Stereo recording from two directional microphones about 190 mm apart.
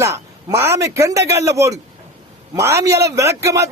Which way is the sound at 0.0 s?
15° right (ahead or behind).